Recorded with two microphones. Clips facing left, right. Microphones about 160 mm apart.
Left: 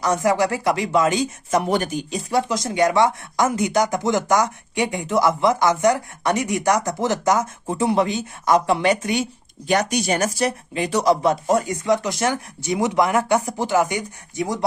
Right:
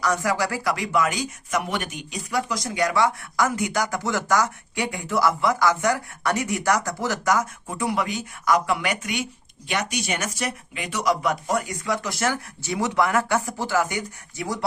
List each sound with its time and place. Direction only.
0.0 s speech: 20° left (ahead or behind)